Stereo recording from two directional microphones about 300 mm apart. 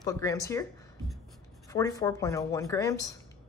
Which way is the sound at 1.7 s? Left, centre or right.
Centre.